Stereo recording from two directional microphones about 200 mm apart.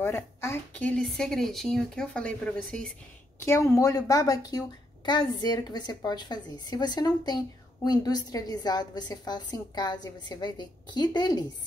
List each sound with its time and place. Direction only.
0.0 s a woman's voice: 10° left (ahead or behind)